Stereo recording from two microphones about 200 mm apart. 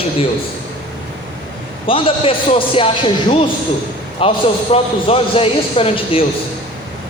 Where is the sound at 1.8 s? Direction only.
25° left (ahead or behind).